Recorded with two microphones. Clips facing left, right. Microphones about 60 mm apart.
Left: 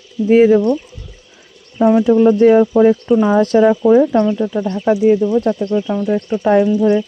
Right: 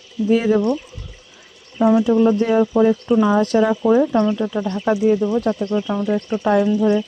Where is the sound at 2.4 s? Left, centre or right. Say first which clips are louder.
Left 8 dB; left.